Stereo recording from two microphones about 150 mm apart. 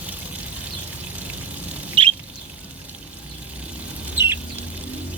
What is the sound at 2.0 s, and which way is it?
Rodents, 35° right (ahead or behind).